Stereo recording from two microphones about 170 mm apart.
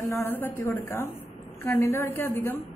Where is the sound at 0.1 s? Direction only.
15° left (ahead or behind).